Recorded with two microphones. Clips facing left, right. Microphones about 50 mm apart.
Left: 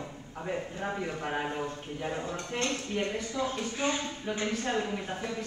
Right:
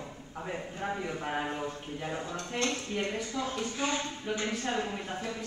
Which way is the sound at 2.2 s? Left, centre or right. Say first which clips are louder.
Left 1 dB; left.